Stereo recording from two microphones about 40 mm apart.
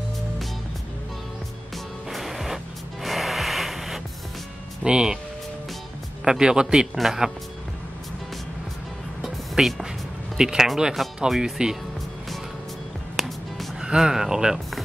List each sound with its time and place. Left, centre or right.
2.0 s music: centre
4.8 s speech: centre
6.2 s speech: centre
7.0 s speech: centre
9.2 s music: centre
10.3 s speech: centre
13.1 s music: centre
13.7 s speech: centre